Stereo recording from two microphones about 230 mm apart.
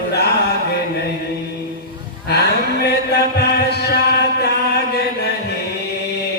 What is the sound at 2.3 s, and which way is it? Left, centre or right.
Music, left.